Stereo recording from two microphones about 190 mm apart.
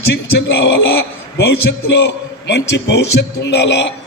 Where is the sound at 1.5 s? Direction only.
60° left (ahead or behind).